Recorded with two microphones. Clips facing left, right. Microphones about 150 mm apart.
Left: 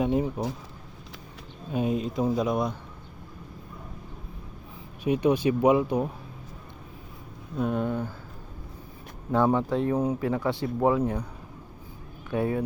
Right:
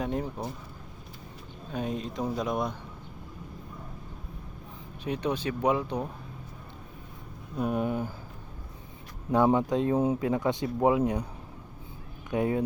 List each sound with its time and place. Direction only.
0.0 s speech: 10° left (ahead or behind)
1.7 s speech: 5° left (ahead or behind)
5.0 s speech: 10° left (ahead or behind)
7.5 s speech: 10° right (ahead or behind)
9.3 s speech: 15° right (ahead or behind)
12.3 s speech: 20° right (ahead or behind)